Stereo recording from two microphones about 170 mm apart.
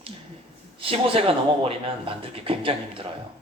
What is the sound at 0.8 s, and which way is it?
Speech, 30° right (ahead or behind).